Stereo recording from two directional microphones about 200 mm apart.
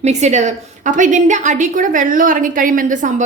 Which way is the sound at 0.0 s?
35° right (ahead or behind).